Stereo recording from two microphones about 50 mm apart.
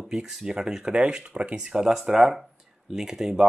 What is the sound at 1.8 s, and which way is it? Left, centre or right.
Speech, centre.